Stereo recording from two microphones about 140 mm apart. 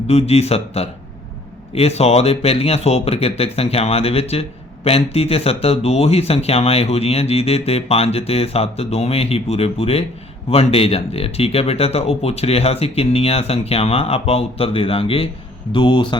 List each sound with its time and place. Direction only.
0.1 s speech: 50° left (ahead or behind)